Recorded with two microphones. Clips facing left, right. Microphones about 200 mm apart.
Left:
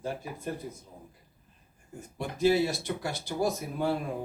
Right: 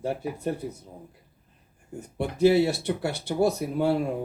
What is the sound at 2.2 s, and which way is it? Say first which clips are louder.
A man's voice: right 5 dB; 65° right (ahead or behind).